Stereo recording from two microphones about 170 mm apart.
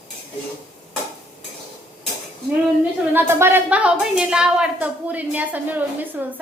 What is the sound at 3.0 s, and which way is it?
A woman's voice, 10° right (ahead or behind).